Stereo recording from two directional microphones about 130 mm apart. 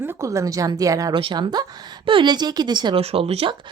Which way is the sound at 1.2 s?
40° right (ahead or behind).